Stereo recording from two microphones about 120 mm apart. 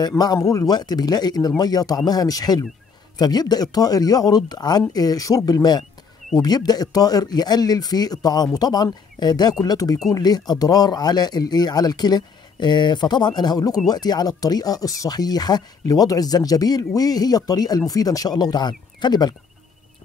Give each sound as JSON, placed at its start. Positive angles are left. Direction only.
{"t": 0.0, "sound": "speech", "side_deg": 35}